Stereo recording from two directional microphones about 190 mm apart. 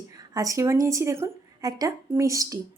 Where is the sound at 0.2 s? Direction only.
20° right (ahead or behind).